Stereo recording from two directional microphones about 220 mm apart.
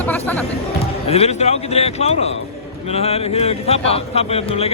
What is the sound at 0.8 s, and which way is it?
Speech, 25° left (ahead or behind).